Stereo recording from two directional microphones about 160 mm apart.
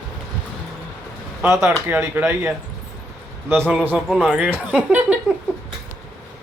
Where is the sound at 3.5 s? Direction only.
15° right (ahead or behind).